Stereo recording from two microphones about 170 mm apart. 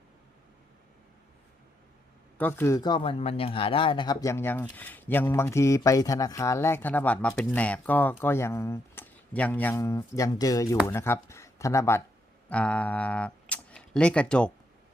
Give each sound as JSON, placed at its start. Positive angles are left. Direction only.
{"t": 2.4, "sound": "speech", "side_deg": 15}